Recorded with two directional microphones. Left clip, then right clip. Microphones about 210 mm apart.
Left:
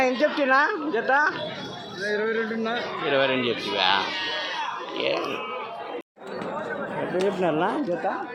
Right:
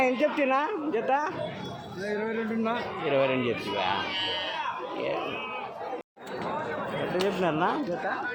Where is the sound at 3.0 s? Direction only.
5° right (ahead or behind).